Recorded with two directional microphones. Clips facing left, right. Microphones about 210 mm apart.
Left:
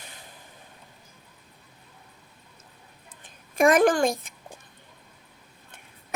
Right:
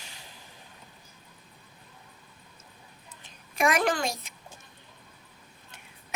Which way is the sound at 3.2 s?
50° left (ahead or behind).